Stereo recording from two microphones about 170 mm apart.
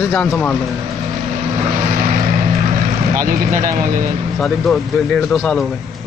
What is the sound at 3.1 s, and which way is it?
Speech, 55° right (ahead or behind).